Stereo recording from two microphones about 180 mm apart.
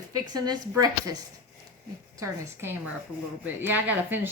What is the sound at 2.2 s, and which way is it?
A woman's voice, 15° right (ahead or behind).